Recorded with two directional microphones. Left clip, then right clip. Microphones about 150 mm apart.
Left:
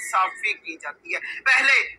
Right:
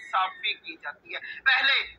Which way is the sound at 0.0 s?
30° left (ahead or behind).